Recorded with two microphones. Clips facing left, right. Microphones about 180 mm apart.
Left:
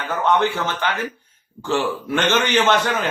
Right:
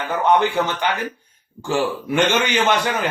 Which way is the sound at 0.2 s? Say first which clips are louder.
Right 2 dB; 15° right (ahead or behind).